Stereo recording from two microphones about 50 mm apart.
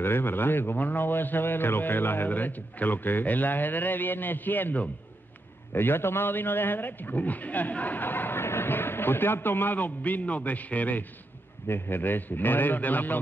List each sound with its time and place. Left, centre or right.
0.0 s a man's voice: left
11.6 s a man's voice: left